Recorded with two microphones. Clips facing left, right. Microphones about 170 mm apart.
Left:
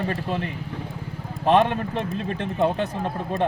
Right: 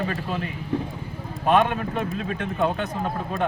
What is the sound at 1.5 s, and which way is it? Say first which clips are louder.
Speech: left 1 dB; 35° left (ahead or behind).